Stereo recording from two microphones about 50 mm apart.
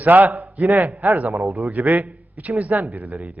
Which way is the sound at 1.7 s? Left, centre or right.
Right.